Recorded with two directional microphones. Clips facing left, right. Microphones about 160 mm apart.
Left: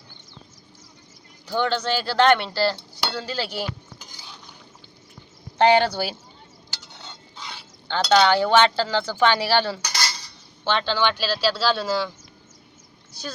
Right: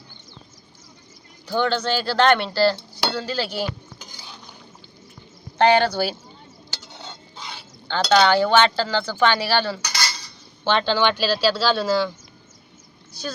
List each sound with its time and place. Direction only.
1.5 s speech: 15° left (ahead or behind)
3.9 s dishes: centre (ahead or behind)
5.5 s speech: 20° left (ahead or behind)
7.0 s stir: 15° right (ahead or behind)
7.9 s speech: 15° left (ahead or behind)
9.8 s cutlery: 40° left (ahead or behind)
10.7 s speech: centre (ahead or behind)